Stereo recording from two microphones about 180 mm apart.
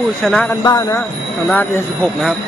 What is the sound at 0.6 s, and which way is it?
Speech, 20° left (ahead or behind).